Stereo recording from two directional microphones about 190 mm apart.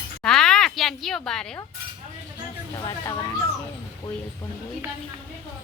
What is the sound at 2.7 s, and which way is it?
Speech, 20° left (ahead or behind).